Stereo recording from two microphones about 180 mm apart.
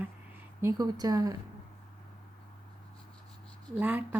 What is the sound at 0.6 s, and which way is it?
Speech, 20° right (ahead or behind).